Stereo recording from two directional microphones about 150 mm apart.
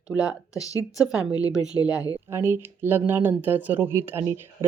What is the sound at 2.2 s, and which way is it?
Speech, 15° right (ahead or behind).